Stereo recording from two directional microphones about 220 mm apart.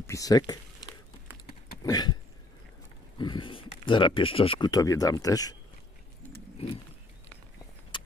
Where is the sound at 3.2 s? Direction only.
20° left (ahead or behind).